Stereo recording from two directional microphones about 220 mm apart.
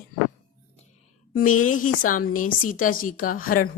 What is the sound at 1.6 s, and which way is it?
A woman's voice, 35° left (ahead or behind).